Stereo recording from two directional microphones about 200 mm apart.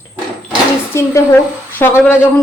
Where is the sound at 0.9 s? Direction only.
10° left (ahead or behind).